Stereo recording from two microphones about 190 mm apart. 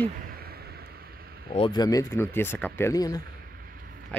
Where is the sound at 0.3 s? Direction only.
55° right (ahead or behind).